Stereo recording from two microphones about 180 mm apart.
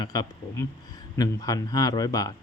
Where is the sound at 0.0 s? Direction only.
20° left (ahead or behind).